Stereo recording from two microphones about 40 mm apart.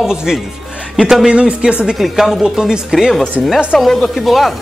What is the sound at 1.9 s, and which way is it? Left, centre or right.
Speech, centre.